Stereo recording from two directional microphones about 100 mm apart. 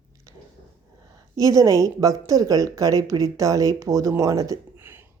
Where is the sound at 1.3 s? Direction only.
35° right (ahead or behind).